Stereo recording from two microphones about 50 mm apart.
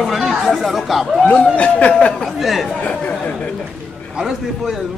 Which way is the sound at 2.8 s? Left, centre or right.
Left.